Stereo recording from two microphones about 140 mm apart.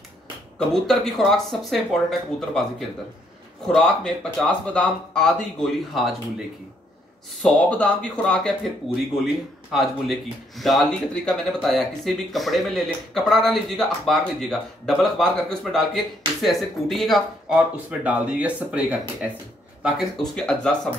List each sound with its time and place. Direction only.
0.6 s speech: 5° left (ahead or behind)
3.6 s speech: 5° left (ahead or behind)
7.4 s speech: 10° left (ahead or behind)
17.8 s speech: 10° right (ahead or behind)